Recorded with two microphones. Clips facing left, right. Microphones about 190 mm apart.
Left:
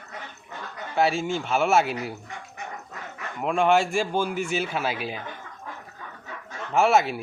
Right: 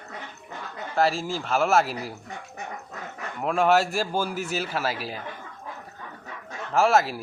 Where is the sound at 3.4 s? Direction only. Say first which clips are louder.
Even; 5° right (ahead or behind).